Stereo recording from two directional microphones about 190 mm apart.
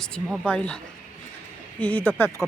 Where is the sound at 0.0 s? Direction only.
5° left (ahead or behind).